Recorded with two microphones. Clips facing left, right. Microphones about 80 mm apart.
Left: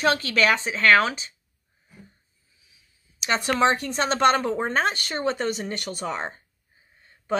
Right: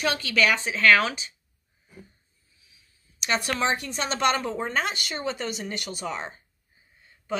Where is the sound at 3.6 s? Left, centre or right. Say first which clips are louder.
Left 5 dB; left.